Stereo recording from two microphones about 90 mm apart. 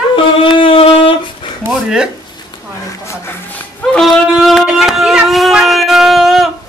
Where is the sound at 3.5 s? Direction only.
10° left (ahead or behind).